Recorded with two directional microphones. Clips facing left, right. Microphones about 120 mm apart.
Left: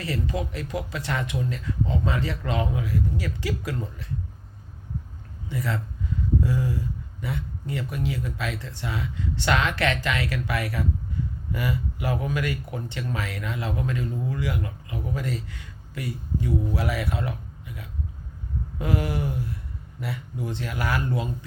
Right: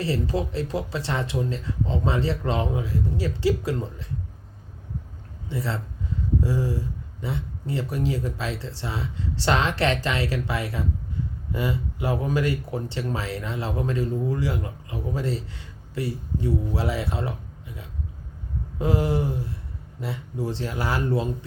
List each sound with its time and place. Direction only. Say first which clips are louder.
0.0 s speech: right 3 dB; 30° right (ahead or behind)
5.5 s speech: even; 30° right (ahead or behind)
18.8 s speech: right 4 dB; 25° right (ahead or behind)